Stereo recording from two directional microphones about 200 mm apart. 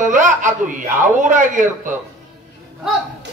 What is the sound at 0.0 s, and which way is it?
A man's voice, 40° right (ahead or behind).